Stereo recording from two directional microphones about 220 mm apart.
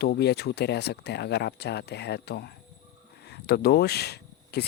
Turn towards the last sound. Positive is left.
turn(degrees=50)  # may be behind; listen again after turning